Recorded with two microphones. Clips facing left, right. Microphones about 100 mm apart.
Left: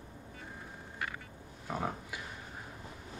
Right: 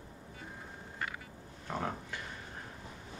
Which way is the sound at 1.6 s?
10° left (ahead or behind).